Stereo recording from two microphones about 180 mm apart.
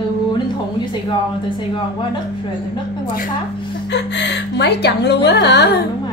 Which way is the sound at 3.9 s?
75° left (ahead or behind).